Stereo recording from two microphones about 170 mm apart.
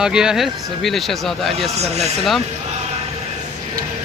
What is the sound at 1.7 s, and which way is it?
Speech, 40° right (ahead or behind).